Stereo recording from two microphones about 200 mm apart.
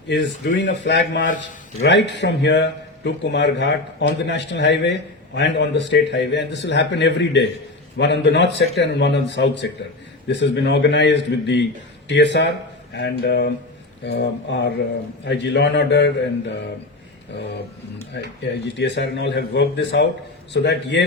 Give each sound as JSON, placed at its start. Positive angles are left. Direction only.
{"t": 0.1, "sound": "a man's voice", "side_deg": 60}
{"t": 18.1, "sound": "a man's voice", "side_deg": 60}